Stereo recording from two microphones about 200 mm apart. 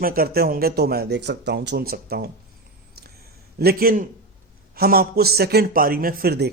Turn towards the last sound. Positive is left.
turn(degrees=-55)  # may be behind; listen again after turning